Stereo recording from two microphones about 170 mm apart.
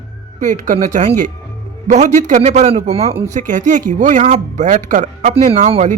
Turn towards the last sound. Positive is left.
turn(degrees=-40)  # may be behind; listen again after turning